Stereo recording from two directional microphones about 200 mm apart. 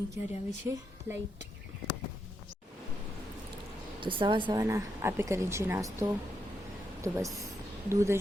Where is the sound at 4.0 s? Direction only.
25° right (ahead or behind).